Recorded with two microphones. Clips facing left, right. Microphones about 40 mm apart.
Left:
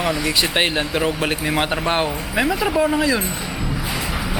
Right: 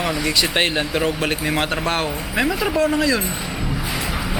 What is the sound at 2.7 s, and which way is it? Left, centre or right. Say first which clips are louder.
Speech: even; centre.